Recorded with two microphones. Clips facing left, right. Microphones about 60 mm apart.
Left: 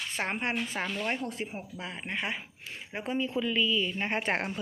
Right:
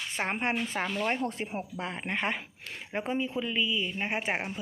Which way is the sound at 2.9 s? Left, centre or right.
Right.